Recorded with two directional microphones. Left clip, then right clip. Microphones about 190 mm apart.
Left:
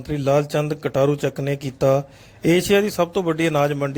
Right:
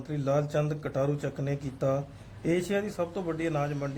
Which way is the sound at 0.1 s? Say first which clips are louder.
Left 9 dB; 40° left (ahead or behind).